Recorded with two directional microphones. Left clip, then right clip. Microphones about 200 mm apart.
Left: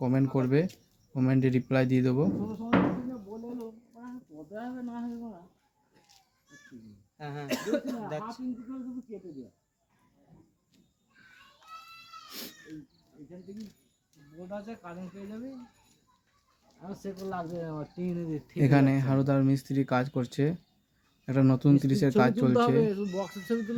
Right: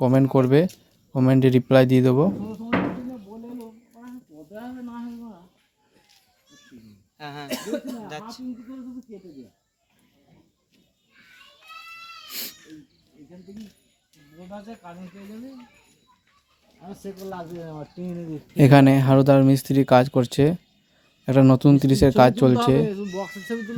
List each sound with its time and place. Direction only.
0.0 s speech: 40° right (ahead or behind)
3.9 s a sound: 35° right (ahead or behind)
7.2 s cough: 50° left (ahead or behind)
7.4 s speech: 30° right (ahead or behind)
12.3 s cat: 10° left (ahead or behind)
14.4 s speech: 30° right (ahead or behind)
17.2 s speech: 25° right (ahead or behind)
18.5 s speech: 45° right (ahead or behind)